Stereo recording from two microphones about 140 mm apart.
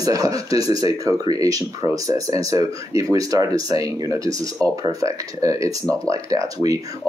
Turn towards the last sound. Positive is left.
turn(degrees=-25)  # may be behind; listen again after turning